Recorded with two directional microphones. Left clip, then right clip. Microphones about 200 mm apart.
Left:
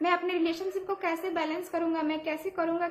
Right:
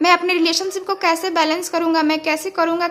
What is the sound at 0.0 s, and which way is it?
A woman's voice, 45° right (ahead or behind).